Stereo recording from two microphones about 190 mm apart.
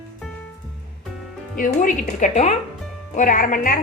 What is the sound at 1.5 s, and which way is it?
A woman's voice, 45° left (ahead or behind).